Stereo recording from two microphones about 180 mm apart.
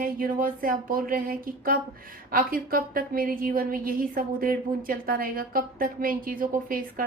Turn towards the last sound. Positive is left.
turn(degrees=-50)  # may be behind; listen again after turning